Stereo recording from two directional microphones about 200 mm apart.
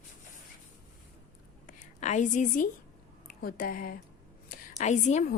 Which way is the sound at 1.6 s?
35° left (ahead or behind).